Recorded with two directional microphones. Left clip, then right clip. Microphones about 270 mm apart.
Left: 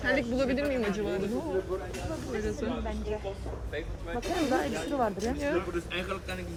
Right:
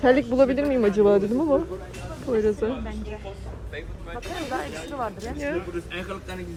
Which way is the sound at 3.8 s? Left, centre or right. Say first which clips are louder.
Even; left.